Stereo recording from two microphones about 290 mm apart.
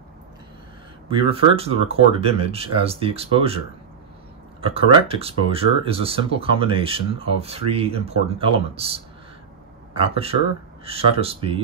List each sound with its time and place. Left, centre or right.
1.3 s speech: centre